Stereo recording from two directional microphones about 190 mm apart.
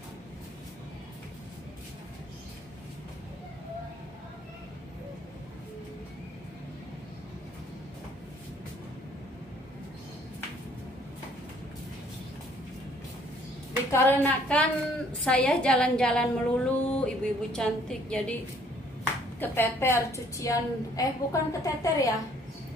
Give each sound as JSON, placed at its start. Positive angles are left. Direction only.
{"t": 13.9, "sound": "a woman's voice", "side_deg": 10}
{"t": 19.4, "sound": "a woman's voice", "side_deg": 10}